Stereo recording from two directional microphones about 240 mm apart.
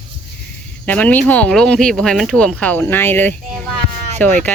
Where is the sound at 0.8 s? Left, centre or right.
Centre.